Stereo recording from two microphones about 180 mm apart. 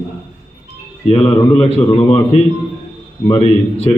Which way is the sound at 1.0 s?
35° left (ahead or behind).